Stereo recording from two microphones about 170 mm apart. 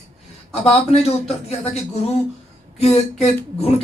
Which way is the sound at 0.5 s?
40° left (ahead or behind).